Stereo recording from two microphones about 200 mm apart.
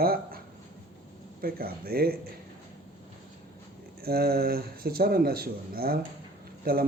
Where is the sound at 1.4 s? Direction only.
50° right (ahead or behind).